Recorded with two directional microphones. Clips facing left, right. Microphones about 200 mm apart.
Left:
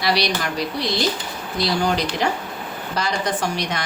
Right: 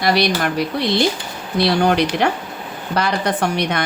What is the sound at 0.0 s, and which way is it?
A woman's voice, 50° right (ahead or behind).